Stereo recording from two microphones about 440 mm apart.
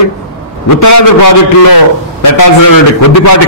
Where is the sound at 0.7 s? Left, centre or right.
Left.